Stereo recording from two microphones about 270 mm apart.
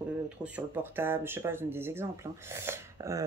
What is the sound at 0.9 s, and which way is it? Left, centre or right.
Speech, centre.